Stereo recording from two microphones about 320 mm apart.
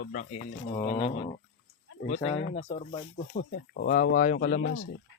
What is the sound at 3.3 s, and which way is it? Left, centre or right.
Speech, left.